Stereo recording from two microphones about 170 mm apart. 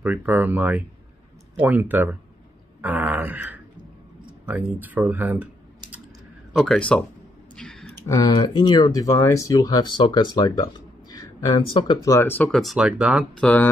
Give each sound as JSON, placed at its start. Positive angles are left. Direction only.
{"t": 0.0, "sound": "speech", "side_deg": -10}
{"t": 6.5, "sound": "speech", "side_deg": 0}
{"t": 7.5, "sound": "a sound", "side_deg": 5}
{"t": 8.1, "sound": "speech", "side_deg": 25}
{"t": 12.4, "sound": "speech", "side_deg": 0}
{"t": 13.4, "sound": "speech", "side_deg": 10}